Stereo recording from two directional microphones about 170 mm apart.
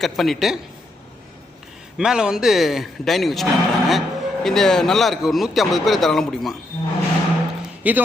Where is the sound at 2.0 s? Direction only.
5° right (ahead or behind).